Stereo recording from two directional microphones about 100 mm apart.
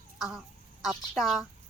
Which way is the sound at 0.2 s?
5° right (ahead or behind).